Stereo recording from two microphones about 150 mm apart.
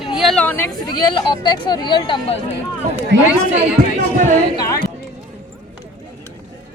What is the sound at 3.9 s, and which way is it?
Speech, 60° right (ahead or behind).